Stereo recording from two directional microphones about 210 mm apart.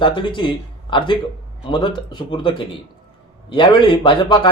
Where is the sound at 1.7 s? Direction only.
20° left (ahead or behind).